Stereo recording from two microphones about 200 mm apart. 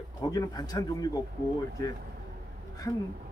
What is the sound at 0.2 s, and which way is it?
Speech, 20° left (ahead or behind).